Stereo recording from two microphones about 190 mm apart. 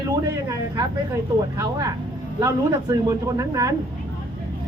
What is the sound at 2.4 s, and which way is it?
A man's voice, 20° right (ahead or behind).